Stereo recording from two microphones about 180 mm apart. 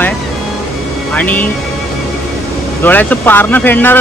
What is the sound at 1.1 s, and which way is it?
Speech, 10° left (ahead or behind).